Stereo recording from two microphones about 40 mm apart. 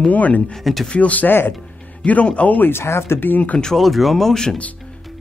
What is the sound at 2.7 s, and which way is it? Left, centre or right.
Speech, left.